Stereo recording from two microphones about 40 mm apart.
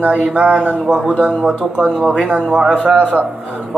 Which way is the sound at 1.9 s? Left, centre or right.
Right.